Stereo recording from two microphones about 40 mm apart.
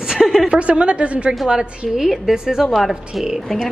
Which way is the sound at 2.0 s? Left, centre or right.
Centre.